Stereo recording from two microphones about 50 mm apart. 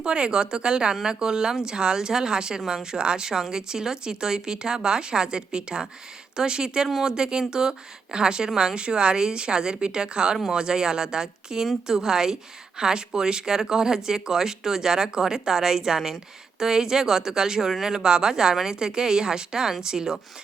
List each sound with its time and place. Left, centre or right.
0.0 s speech: centre